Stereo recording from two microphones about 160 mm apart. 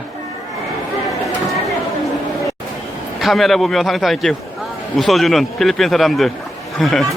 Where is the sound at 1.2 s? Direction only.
Centre (ahead or behind).